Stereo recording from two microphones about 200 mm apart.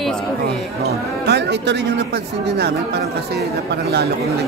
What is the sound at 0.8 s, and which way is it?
A man's voice, 55° right (ahead or behind).